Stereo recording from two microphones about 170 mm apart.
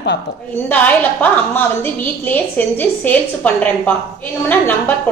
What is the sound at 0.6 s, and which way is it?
A woman's voice, 10° left (ahead or behind).